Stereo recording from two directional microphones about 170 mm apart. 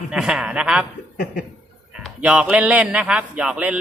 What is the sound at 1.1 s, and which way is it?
Cough, 55° left (ahead or behind).